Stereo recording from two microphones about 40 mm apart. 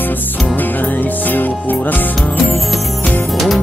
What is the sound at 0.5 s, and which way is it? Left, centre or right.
Music, left.